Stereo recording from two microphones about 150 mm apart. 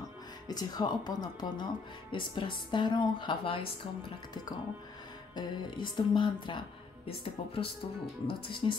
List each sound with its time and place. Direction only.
0.5 s speech: 25° left (ahead or behind)
5.3 s speech: 30° left (ahead or behind)